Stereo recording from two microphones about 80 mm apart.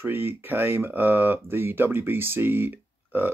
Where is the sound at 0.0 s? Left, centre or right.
Right.